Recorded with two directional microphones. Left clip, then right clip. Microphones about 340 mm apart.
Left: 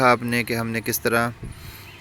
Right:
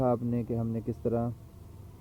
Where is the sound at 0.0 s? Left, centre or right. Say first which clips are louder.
Left 11 dB; left.